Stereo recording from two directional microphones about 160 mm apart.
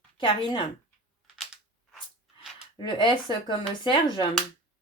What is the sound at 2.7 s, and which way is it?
Speech, 30° left (ahead or behind).